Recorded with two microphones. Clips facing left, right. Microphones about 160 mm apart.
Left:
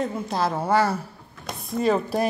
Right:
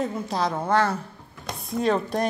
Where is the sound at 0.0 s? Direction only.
Centre (ahead or behind).